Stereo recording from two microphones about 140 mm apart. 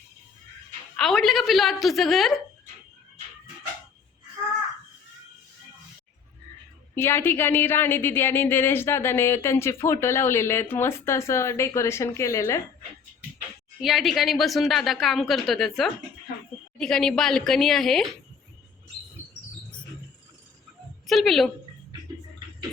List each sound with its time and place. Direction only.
0.9 s speech: 5° left (ahead or behind)
6.9 s speech: 15° left (ahead or behind)
13.8 s speech: centre (ahead or behind)
21.1 s speech: centre (ahead or behind)